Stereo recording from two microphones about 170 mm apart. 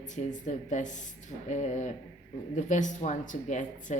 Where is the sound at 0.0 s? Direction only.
45° left (ahead or behind).